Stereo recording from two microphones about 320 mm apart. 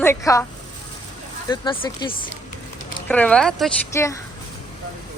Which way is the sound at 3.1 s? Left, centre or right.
Centre.